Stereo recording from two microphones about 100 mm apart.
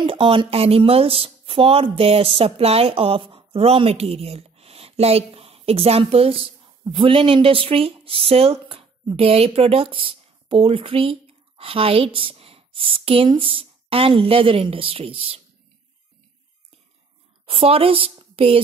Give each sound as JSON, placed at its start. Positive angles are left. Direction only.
{"t": 0.0, "sound": "speech", "side_deg": -60}
{"t": 6.9, "sound": "speech", "side_deg": -60}
{"t": 17.5, "sound": "a woman's voice", "side_deg": -70}